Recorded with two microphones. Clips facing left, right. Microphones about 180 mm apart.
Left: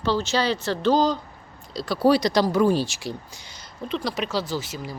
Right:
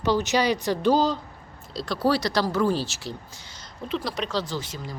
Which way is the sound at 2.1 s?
15° left (ahead or behind).